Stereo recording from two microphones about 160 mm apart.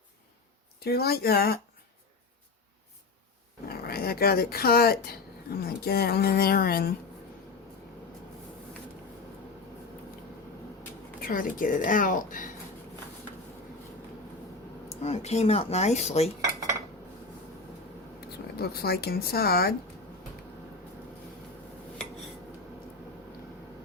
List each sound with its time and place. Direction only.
0.9 s speech: 75° left (ahead or behind)
3.7 s speech: 75° left (ahead or behind)
11.2 s a woman's voice: 60° left (ahead or behind)
14.8 s speech: 45° left (ahead or behind)
18.5 s speech: 75° left (ahead or behind)